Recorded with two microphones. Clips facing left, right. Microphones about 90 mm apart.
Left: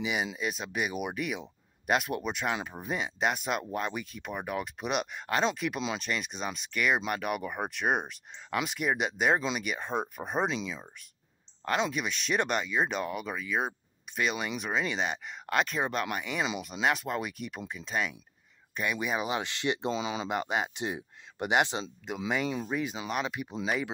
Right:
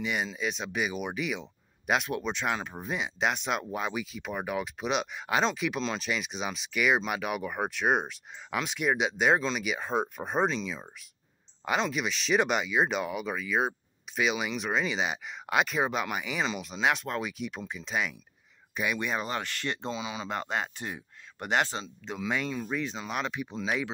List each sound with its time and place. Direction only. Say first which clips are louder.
0.0 s speech: even; 5° left (ahead or behind)
19.9 s speech: left 3 dB; 25° left (ahead or behind)
20.2 s speech: left 2 dB; 15° left (ahead or behind)